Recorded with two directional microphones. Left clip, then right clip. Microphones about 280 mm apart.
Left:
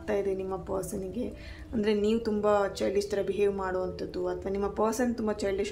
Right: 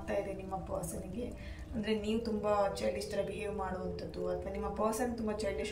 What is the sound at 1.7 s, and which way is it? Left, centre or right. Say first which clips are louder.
A man's voice: left 8 dB; centre.